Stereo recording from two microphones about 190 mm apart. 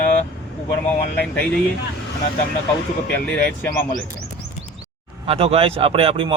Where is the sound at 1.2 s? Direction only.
10° left (ahead or behind).